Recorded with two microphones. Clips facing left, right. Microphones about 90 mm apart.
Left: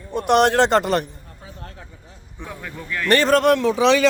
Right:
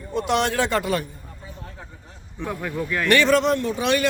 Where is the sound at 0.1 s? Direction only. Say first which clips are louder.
Left 6 dB; 55° left (ahead or behind).